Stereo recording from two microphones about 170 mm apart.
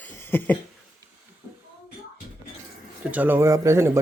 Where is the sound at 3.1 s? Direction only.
10° right (ahead or behind).